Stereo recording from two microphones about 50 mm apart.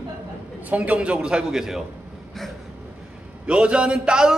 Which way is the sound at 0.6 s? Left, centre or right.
Right.